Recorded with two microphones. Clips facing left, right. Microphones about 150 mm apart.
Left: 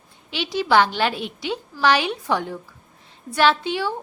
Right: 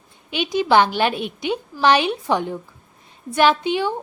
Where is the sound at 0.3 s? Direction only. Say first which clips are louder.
Right 3 dB; 15° right (ahead or behind).